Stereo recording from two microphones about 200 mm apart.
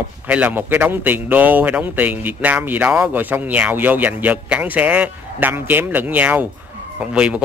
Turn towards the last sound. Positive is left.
turn(degrees=-5)  # may be behind; listen again after turning